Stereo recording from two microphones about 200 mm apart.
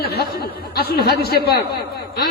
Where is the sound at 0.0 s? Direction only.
50° left (ahead or behind).